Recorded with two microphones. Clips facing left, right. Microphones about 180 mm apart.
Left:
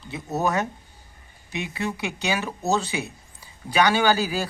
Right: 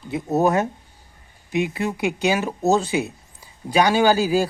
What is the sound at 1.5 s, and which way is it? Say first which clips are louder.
Speech: right 6 dB; 50° right (ahead or behind).